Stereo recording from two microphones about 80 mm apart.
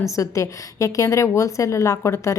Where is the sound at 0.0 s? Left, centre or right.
Left.